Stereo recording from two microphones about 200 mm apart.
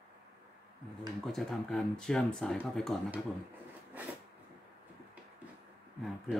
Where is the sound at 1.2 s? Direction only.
Centre (ahead or behind).